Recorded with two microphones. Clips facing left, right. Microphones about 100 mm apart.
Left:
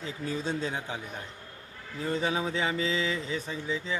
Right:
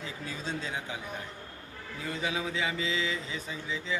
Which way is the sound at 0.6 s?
30° left (ahead or behind).